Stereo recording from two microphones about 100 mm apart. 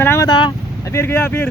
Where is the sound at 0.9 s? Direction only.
25° left (ahead or behind).